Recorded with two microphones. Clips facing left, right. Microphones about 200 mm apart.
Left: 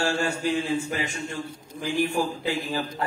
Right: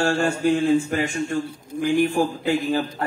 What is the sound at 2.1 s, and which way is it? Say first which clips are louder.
Speech: right 5 dB; 50° right (ahead or behind).